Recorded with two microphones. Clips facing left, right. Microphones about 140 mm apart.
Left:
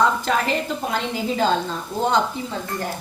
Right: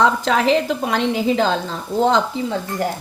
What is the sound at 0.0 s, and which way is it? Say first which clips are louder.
A woman's voice: right 4 dB; 90° right.